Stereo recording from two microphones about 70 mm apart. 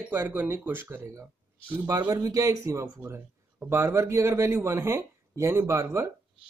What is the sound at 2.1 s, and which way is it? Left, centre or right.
Speech, right.